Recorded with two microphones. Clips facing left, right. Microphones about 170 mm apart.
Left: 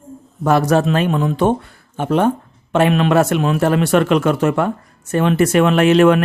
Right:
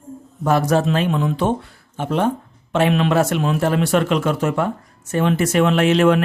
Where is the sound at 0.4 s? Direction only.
70° left (ahead or behind).